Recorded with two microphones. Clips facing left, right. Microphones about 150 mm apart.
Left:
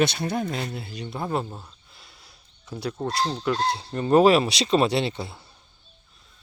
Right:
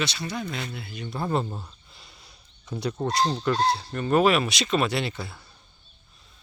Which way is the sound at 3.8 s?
25° left (ahead or behind).